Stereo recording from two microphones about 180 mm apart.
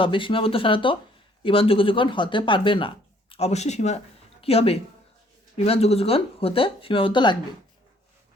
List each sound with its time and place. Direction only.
0.0 s speech: 30° left (ahead or behind)